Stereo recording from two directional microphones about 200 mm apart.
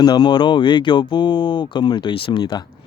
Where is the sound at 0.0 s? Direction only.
20° left (ahead or behind).